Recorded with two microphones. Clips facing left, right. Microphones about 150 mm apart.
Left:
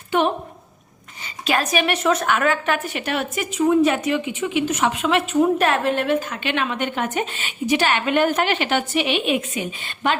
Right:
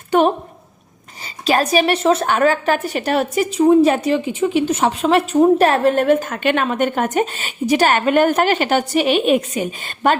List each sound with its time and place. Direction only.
0.1 s a woman's voice: 40° right (ahead or behind)